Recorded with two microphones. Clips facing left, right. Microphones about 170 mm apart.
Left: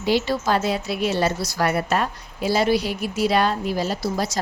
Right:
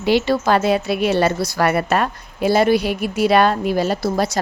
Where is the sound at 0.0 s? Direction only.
65° right (ahead or behind).